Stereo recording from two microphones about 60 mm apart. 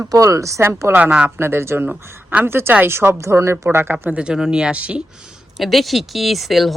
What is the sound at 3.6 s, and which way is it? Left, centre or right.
Speech, right.